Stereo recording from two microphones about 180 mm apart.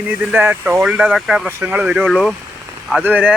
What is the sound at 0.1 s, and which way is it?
Speech, 10° right (ahead or behind).